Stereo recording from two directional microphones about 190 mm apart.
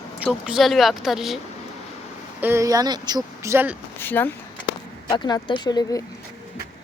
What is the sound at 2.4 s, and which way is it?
Speech, 15° right (ahead or behind).